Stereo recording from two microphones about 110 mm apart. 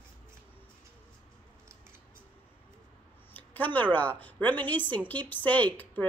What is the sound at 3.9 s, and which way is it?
Speech, 15° left (ahead or behind).